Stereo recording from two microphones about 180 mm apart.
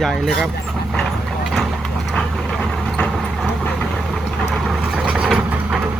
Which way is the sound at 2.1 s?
5° left (ahead or behind).